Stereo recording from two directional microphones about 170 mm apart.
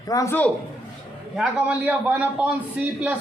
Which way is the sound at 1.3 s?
5° right (ahead or behind).